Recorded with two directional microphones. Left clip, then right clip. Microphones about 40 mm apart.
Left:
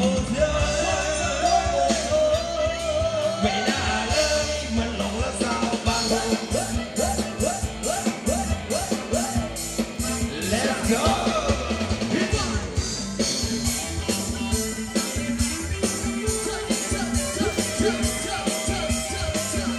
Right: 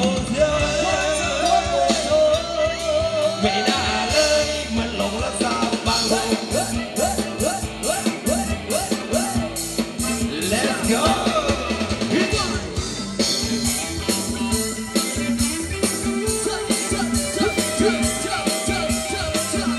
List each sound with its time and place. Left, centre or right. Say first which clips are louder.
0.0 s music: right 3 dB; right
10.5 s music: right 2 dB; right